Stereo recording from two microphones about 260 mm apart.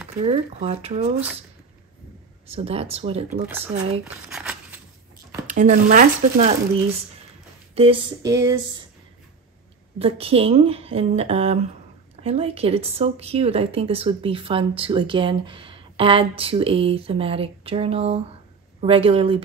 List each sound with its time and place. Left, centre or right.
0.2 s speech: right
2.5 s speech: right
3.4 s a sound: centre
5.5 s speech: right
7.7 s a sound: right
9.9 s speech: right